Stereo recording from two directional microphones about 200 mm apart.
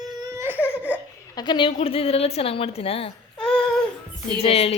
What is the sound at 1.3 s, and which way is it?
A woman's voice, 25° left (ahead or behind).